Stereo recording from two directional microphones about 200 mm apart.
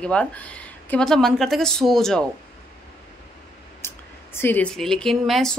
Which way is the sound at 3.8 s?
10° left (ahead or behind).